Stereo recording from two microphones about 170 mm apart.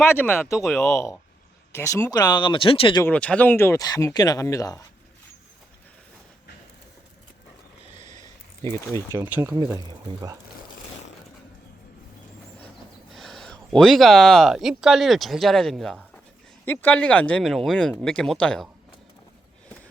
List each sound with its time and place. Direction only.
0.0 s speech: 15° left (ahead or behind)
0.5 s speech: centre (ahead or behind)
1.7 s speech: 15° left (ahead or behind); by 3.0 s 30° left (ahead or behind)
3.0 s speech: 10° left (ahead or behind)
8.6 s speech: 15° left (ahead or behind)
9.3 s speech: 10° right (ahead or behind)
9.6 s speech: 20° right (ahead or behind)
13.1 s speech: centre (ahead or behind)